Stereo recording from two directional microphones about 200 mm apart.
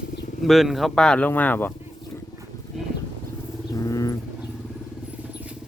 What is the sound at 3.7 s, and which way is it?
Vehicle, 15° left (ahead or behind).